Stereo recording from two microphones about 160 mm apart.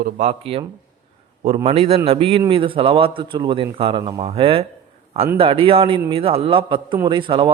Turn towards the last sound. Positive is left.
turn(degrees=-30)  # may be behind; listen again after turning